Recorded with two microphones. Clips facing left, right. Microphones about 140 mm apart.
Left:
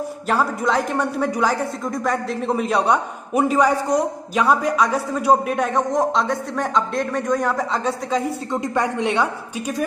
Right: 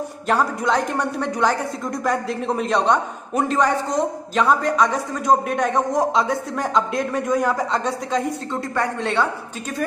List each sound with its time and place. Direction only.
0.3 s speech: centre (ahead or behind)
8.5 s speech: 15° left (ahead or behind)